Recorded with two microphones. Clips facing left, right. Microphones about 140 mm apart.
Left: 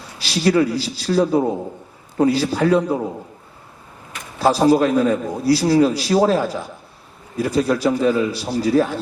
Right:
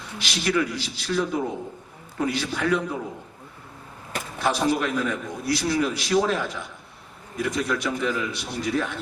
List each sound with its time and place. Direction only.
0.0 s a man's voice: 35° left (ahead or behind)
4.4 s a man's voice: 35° left (ahead or behind)